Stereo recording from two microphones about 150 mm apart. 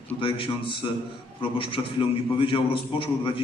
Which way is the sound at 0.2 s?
35° left (ahead or behind).